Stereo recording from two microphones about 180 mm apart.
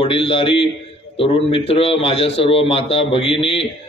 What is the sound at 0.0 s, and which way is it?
A man's voice, 30° left (ahead or behind).